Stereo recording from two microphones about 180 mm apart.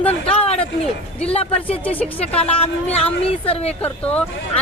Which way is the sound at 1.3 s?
35° left (ahead or behind).